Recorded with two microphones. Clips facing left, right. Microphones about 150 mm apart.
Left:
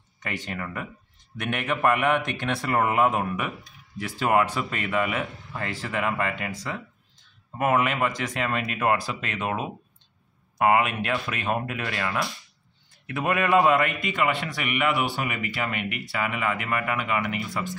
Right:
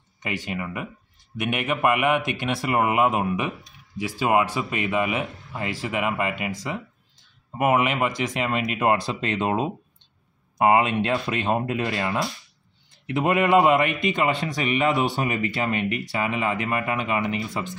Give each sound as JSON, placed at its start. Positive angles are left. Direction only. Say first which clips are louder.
{"t": 0.2, "sound": "a man's voice", "louder": "right 3 dB", "side_deg": -15}